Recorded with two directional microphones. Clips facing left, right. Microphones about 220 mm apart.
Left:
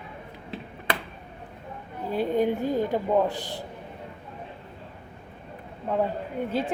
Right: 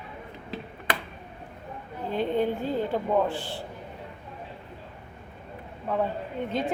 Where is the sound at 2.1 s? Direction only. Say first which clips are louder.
Left 2 dB; 10° left (ahead or behind).